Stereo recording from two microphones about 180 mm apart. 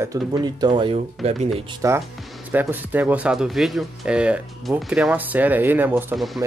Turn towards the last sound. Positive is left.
turn(degrees=0)  # may be behind; listen again after turning